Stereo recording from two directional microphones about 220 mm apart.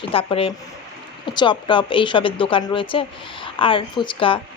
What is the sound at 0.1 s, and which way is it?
Speech, 25° left (ahead or behind).